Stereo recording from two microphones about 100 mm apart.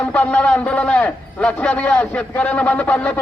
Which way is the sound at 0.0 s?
15° left (ahead or behind).